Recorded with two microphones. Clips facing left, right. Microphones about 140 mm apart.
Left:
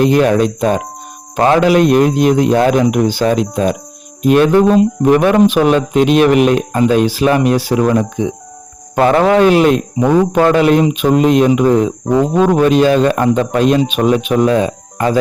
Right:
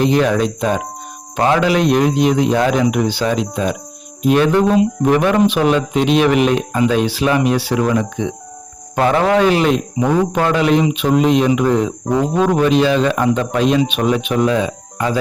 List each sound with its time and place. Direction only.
0.0 s speech: 50° left (ahead or behind)
12.1 s speech: centre (ahead or behind)
12.4 s speech: 45° left (ahead or behind)